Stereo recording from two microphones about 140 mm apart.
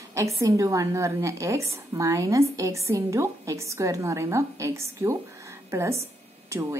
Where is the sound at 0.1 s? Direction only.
20° right (ahead or behind).